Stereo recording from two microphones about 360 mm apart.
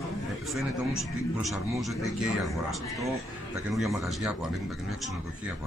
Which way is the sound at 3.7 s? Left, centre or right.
Centre.